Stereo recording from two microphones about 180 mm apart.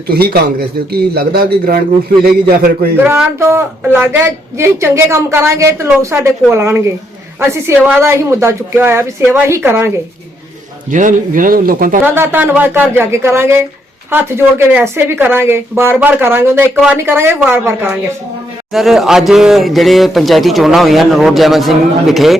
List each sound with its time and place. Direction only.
0.1 s a man's voice: 60° right (ahead or behind)
3.0 s speech: 10° right (ahead or behind)
10.9 s speech: 45° right (ahead or behind)
12.0 s speech: 10° right (ahead or behind)
18.7 s speech: centre (ahead or behind)